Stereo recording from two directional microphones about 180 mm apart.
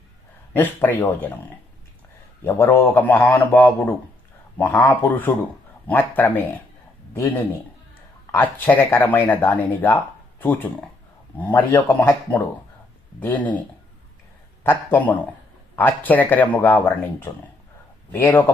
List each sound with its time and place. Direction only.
0.5 s speech: 10° left (ahead or behind)
2.4 s speech: 10° left (ahead or behind)
8.3 s speech: 10° left (ahead or behind)
14.6 s speech: 10° left (ahead or behind)